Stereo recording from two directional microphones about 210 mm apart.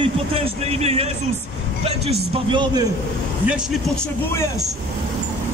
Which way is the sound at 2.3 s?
20° right (ahead or behind).